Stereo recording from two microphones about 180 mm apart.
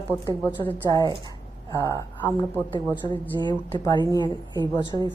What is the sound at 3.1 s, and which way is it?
Speech, 25° right (ahead or behind).